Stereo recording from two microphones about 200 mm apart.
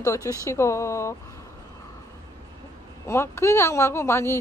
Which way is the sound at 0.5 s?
15° left (ahead or behind).